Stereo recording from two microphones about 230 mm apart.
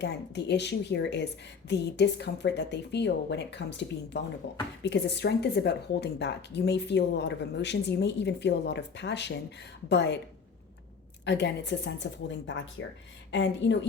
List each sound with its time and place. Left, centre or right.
0.0 s speech: left
11.3 s speech: left